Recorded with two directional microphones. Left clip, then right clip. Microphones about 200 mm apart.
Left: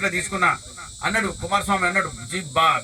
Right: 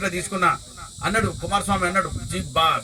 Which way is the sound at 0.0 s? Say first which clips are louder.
Left 1 dB; 45° right (ahead or behind).